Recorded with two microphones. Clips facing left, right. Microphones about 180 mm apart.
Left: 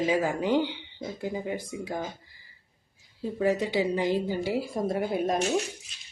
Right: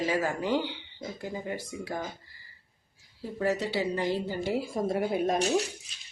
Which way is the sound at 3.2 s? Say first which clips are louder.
Left 3 dB; 15° left (ahead or behind).